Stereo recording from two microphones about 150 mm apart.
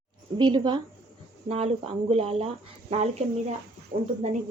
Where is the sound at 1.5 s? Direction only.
40° right (ahead or behind).